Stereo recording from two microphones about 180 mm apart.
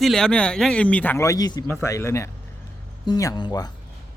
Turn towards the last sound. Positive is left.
turn(degrees=25)  # may be behind; listen again after turning